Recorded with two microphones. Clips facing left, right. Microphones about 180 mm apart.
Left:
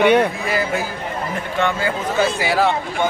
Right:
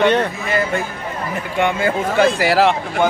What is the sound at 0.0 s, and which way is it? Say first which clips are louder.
Speech: left 1 dB; 10° left (ahead or behind).